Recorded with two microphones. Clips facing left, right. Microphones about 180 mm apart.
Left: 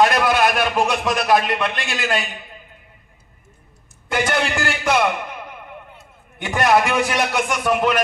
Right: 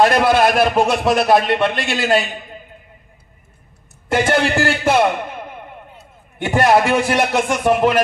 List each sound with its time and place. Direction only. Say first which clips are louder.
0.0 s a man's voice: right 3 dB; 30° right (ahead or behind)
4.1 s a man's voice: right 5 dB; 30° right (ahead or behind)